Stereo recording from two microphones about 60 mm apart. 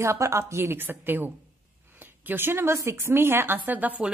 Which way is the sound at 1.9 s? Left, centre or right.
Right.